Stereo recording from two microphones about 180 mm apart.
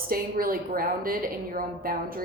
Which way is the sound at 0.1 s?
55° right (ahead or behind).